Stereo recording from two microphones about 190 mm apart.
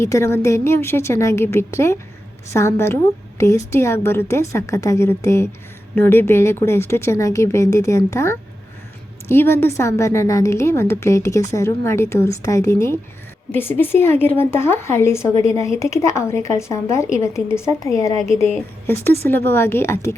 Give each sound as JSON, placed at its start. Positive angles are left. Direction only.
{"t": 0.0, "sound": "a woman's voice", "side_deg": 15}
{"t": 19.5, "sound": "a woman's voice", "side_deg": 10}